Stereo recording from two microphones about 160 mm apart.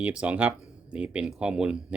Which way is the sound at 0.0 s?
10° right (ahead or behind).